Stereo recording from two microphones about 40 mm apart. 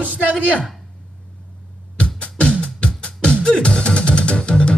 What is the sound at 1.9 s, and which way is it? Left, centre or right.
Music, left.